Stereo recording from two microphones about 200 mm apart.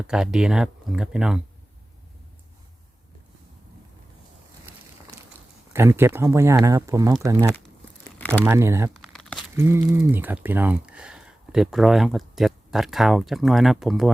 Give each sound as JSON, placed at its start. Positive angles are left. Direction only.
{"t": 0.1, "sound": "speech", "side_deg": -5}
{"t": 5.7, "sound": "speech", "side_deg": -10}
{"t": 9.0, "sound": "crumpling", "side_deg": 0}
{"t": 9.6, "sound": "speech", "side_deg": -10}